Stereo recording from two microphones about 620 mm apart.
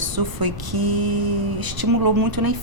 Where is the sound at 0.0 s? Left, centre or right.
Right.